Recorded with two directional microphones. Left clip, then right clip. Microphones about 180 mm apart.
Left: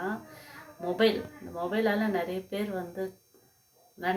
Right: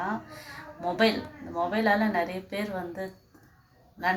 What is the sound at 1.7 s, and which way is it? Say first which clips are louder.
Speech: right 3 dB; 30° left (ahead or behind).